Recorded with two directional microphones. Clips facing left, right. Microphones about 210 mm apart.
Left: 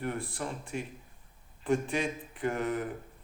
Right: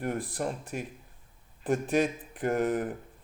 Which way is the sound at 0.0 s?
45° right (ahead or behind).